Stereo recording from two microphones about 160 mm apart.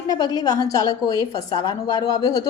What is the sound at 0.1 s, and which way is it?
A woman's voice, 25° left (ahead or behind).